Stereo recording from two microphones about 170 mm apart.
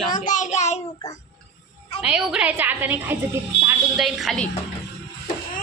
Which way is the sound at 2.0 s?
5° right (ahead or behind).